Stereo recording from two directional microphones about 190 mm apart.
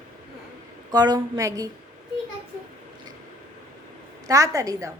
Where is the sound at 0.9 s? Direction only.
20° right (ahead or behind).